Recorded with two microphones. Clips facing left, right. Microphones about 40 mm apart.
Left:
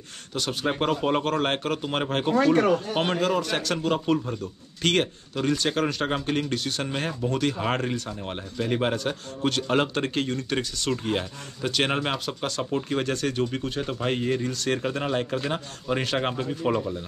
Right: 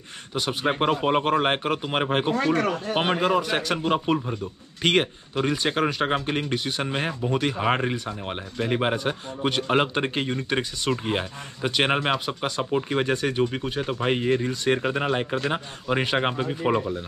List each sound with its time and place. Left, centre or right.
0.3 s speech: centre